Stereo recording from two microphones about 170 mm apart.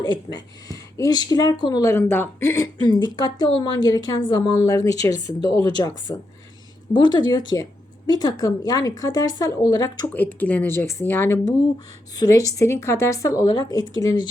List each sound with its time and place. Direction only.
0.0 s speech: 25° left (ahead or behind)
6.9 s speech: 25° left (ahead or behind)
10.2 s speech: 10° left (ahead or behind)